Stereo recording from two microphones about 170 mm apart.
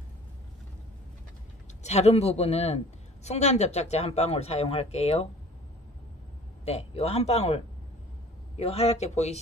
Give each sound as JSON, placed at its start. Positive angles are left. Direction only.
{"t": 1.8, "sound": "speech", "side_deg": 40}
{"t": 6.6, "sound": "speech", "side_deg": 40}